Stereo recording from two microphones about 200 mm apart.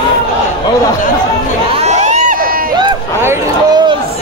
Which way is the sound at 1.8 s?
35° right (ahead or behind).